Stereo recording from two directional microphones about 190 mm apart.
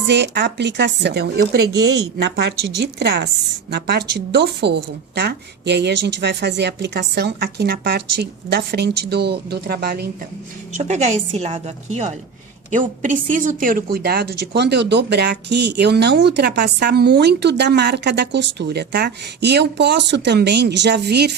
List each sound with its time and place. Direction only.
0.1 s a woman's voice: 65° right (ahead or behind)
10.8 s a woman's voice: 35° right (ahead or behind); by 21.3 s 60° right (ahead or behind)